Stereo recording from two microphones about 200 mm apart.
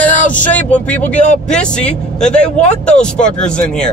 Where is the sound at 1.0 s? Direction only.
40° left (ahead or behind).